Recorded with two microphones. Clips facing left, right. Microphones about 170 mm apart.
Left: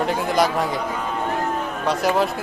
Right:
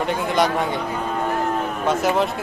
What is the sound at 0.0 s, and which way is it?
Speech, centre (ahead or behind).